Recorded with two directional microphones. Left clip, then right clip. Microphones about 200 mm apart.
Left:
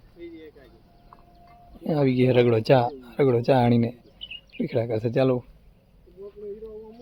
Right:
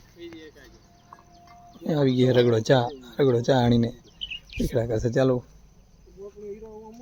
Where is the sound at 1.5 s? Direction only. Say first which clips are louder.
Left 1 dB; centre (ahead or behind).